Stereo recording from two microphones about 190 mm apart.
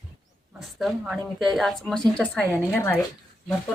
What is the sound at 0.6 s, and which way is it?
A woman's voice, centre (ahead or behind).